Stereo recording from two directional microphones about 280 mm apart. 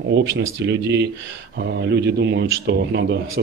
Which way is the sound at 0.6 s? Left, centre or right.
Right.